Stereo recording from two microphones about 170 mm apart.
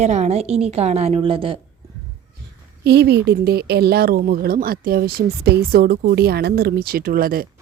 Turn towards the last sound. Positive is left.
turn(degrees=-60)  # may be behind; listen again after turning